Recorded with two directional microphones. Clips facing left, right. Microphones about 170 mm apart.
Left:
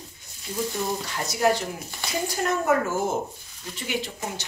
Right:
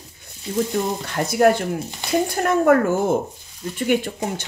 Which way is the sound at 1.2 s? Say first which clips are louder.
Right 7 dB; 60° right (ahead or behind).